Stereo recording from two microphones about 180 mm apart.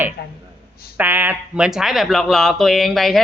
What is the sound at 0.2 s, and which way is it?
Speech, 60° left (ahead or behind).